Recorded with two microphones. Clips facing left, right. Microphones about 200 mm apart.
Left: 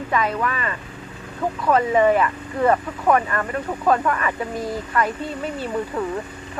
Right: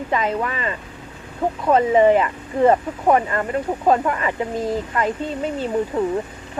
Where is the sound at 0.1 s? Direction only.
25° right (ahead or behind).